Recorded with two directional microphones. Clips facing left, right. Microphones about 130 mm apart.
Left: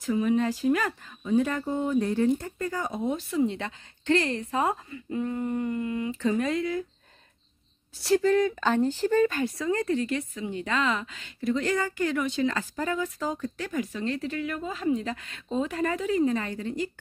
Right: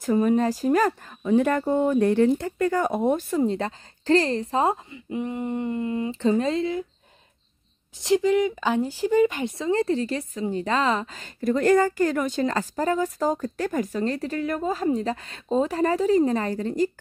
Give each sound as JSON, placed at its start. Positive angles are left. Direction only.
{"t": 0.0, "sound": "speech", "side_deg": -45}
{"t": 1.2, "sound": "speech", "side_deg": -60}
{"t": 8.0, "sound": "speech", "side_deg": -15}